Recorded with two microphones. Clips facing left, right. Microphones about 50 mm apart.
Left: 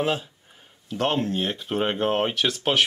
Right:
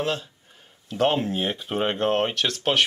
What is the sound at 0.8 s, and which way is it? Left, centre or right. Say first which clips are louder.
Speech: right 2 dB; centre.